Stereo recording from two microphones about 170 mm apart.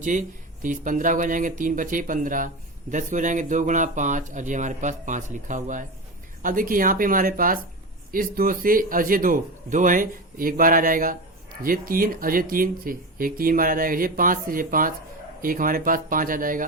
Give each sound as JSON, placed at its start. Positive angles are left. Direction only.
{"t": 0.0, "sound": "speech", "side_deg": -50}